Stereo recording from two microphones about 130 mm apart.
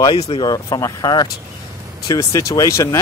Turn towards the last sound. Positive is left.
turn(degrees=25)  # may be behind; listen again after turning